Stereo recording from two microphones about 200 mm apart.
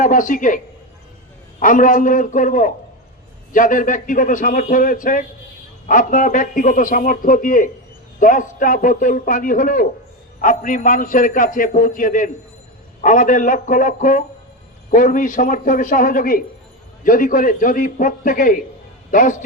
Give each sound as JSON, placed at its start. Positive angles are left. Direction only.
{"t": 0.0, "sound": "a man's voice", "side_deg": 40}